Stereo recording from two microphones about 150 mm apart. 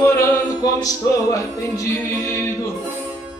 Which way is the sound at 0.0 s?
20° left (ahead or behind).